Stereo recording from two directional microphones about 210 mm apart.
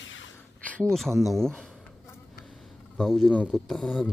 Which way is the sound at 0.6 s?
5° left (ahead or behind).